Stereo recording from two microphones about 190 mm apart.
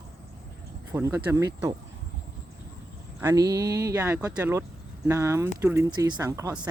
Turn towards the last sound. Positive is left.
turn(degrees=-20)  # may be behind; listen again after turning